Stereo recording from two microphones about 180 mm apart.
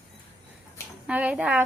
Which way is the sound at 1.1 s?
5° right (ahead or behind).